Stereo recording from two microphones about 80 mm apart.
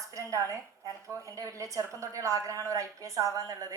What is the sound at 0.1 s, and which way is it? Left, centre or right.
A woman's voice, right.